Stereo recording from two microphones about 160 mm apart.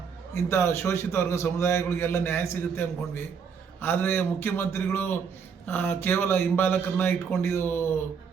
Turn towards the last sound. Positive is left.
turn(degrees=15)  # may be behind; listen again after turning